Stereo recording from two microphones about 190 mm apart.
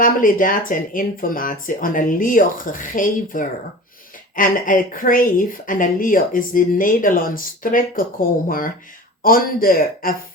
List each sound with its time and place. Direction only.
0.0 s a woman's voice: 45° left (ahead or behind)